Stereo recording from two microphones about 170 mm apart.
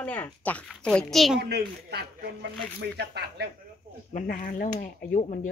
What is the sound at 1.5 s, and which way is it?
A woman's voice, 70° right (ahead or behind).